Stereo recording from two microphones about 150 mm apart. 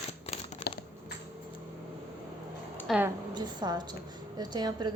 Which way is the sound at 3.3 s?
30° right (ahead or behind).